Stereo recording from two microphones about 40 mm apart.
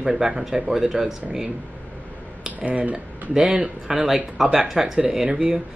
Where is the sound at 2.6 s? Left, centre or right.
Right.